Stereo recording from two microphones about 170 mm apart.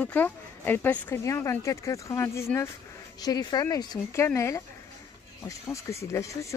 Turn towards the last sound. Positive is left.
turn(degrees=15)  # may be behind; listen again after turning